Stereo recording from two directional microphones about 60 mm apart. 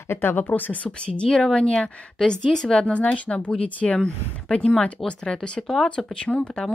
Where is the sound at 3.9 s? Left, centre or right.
Centre.